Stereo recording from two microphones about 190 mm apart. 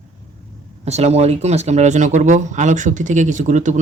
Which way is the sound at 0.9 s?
35° right (ahead or behind).